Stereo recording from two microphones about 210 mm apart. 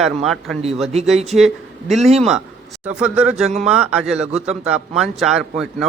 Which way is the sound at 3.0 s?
5° right (ahead or behind).